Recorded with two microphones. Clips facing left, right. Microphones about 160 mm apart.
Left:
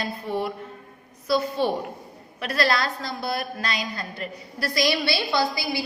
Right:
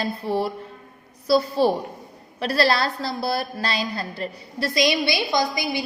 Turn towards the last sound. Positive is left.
turn(degrees=-20)  # may be behind; listen again after turning